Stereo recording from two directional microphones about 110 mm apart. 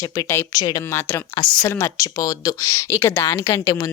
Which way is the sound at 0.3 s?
25° left (ahead or behind).